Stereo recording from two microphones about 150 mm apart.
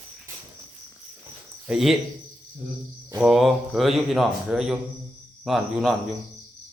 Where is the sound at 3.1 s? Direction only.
5° right (ahead or behind).